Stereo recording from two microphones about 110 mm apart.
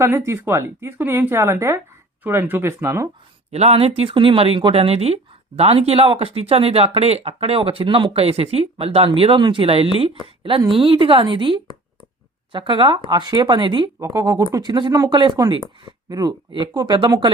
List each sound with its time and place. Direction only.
0.0 s speech: 25° right (ahead or behind)
3.5 s speech: 75° right (ahead or behind); by 13.9 s 45° right (ahead or behind)
14.0 s speech: 30° right (ahead or behind)
14.7 s speech: 45° right (ahead or behind)
16.5 s speech: 45° right (ahead or behind)